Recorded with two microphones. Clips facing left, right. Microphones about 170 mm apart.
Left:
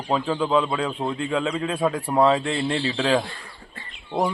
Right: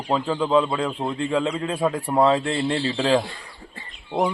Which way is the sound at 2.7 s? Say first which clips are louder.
Right 1 dB; 5° right (ahead or behind).